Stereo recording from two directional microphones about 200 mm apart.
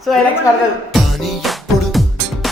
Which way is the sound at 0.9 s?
Centre (ahead or behind).